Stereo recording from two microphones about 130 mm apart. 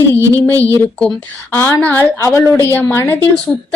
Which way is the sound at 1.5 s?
20° left (ahead or behind).